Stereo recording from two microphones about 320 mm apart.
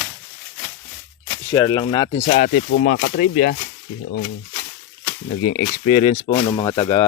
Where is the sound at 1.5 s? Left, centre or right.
Centre; by 3.6 s left.